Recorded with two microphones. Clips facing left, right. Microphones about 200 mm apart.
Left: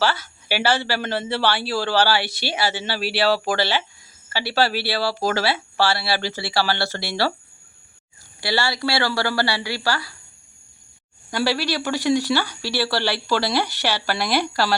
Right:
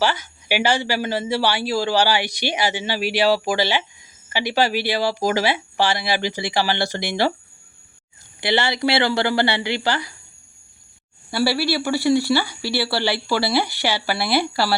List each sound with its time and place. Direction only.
0.0 s speech: 15° right (ahead or behind)
8.4 s speech: 20° right (ahead or behind)
11.3 s speech: 10° right (ahead or behind)